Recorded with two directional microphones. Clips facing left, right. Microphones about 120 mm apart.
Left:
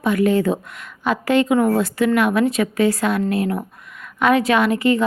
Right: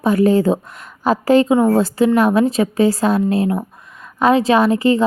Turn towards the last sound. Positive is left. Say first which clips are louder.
# right 3 dB
turn(degrees=-30)  # may be behind; listen again after turning